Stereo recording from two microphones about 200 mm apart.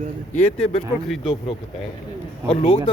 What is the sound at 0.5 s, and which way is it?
Speech, 30° left (ahead or behind).